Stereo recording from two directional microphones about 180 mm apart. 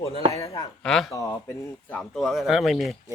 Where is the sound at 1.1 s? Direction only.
20° left (ahead or behind); by 2.9 s centre (ahead or behind).